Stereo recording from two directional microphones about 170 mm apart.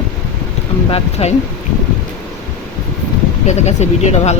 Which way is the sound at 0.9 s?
40° left (ahead or behind).